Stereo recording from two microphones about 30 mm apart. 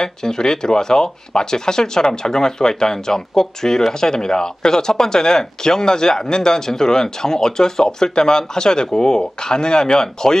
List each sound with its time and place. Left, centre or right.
0.0 s speech: left